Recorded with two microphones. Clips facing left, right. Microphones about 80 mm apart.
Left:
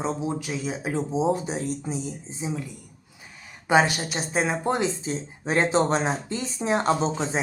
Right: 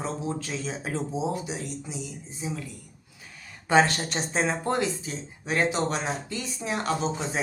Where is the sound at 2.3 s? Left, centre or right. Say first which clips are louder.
Left 2 dB; centre.